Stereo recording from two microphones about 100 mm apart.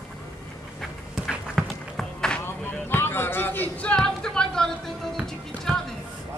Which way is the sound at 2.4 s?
25° left (ahead or behind).